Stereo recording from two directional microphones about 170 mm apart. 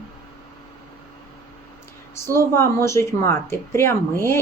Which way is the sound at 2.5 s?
15° left (ahead or behind).